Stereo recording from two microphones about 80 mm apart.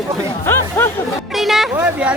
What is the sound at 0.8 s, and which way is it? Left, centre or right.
Speech, left.